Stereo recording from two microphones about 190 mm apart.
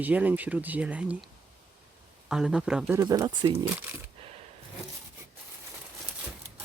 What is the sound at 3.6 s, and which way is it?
Speech, 10° right (ahead or behind).